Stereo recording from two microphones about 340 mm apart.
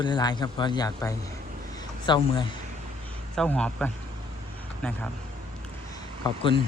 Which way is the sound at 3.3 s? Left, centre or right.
Centre.